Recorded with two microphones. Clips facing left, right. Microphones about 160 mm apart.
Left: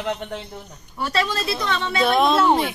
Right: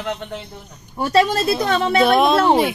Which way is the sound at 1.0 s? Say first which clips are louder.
Right 7 dB; 40° right (ahead or behind).